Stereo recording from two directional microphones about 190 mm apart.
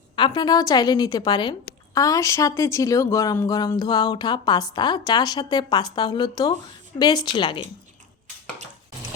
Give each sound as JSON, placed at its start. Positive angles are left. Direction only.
{"t": 0.2, "sound": "speech", "side_deg": 25}